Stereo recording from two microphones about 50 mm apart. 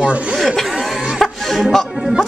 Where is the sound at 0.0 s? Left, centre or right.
Right.